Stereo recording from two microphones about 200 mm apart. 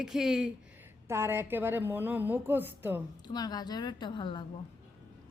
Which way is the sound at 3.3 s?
20° left (ahead or behind).